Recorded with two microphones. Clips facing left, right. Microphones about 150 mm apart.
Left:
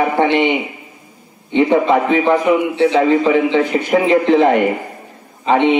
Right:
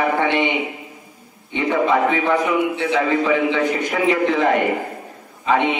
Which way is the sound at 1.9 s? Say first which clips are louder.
Left 4 dB; 25° left (ahead or behind).